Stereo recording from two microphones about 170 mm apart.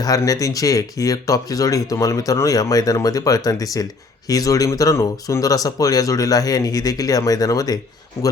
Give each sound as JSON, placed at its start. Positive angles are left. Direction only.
{"t": 0.0, "sound": "speech", "side_deg": 20}